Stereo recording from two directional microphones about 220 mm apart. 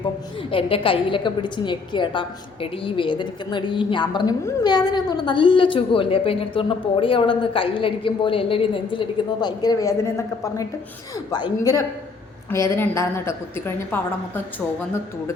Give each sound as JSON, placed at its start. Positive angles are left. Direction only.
{"t": 0.5, "sound": "a woman's voice", "side_deg": 25}